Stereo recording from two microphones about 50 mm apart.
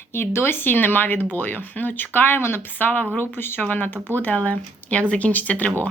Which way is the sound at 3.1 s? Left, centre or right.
Left.